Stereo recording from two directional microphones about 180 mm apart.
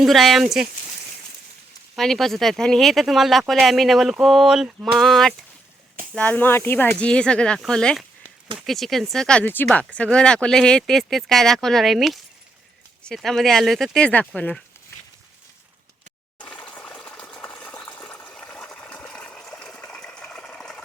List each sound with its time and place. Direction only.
0.0 s speech: centre (ahead or behind)
2.0 s speech: centre (ahead or behind)
16.4 s ratchet: 5° left (ahead or behind)